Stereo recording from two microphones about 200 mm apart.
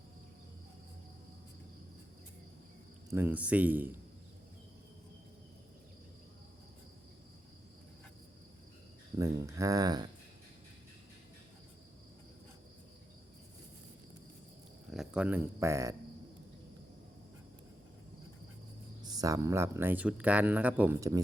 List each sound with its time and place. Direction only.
3.1 s speech: 10° right (ahead or behind)
9.1 s speech: 15° right (ahead or behind)
14.8 s speech: 5° right (ahead or behind)
19.0 s speech: 20° right (ahead or behind)